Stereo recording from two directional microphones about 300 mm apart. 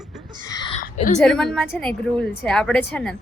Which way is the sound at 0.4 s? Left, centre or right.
Centre.